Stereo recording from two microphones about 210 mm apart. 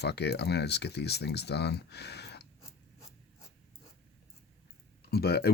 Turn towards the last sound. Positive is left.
turn(degrees=50)  # may be behind; listen again after turning